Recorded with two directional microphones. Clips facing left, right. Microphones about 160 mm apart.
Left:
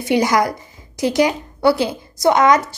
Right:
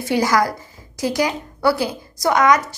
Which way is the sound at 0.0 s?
20° left (ahead or behind).